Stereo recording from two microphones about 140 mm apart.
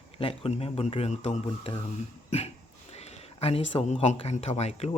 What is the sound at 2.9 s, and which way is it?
Speech, 45° left (ahead or behind).